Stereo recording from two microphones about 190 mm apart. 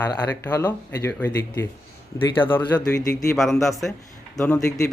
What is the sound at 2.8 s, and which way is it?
Speech, 15° left (ahead or behind).